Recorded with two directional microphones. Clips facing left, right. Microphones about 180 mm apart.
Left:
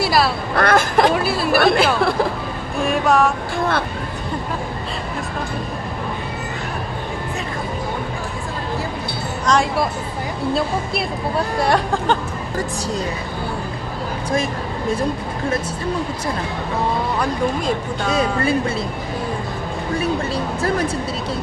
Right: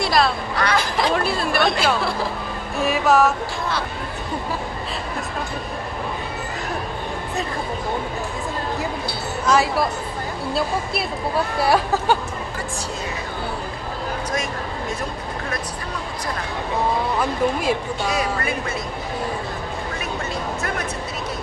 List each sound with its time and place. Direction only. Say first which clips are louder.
0.0 s a sound: left 1 dB; 5° left (ahead or behind)
0.6 s speech: left 7 dB; 50° left (ahead or behind)
1.1 s a woman's voice: left 3 dB; 5° left (ahead or behind)
1.6 s speech: left 6 dB; 55° left (ahead or behind)
2.8 s speech: even; 5° right (ahead or behind)
9.5 s speech: left 1 dB; 5° right (ahead or behind)
11.6 s speech: even; 5° right (ahead or behind)
17.2 s speech: left 1 dB; 5° right (ahead or behind)
20.6 s speech: left 7 dB; 30° left (ahead or behind)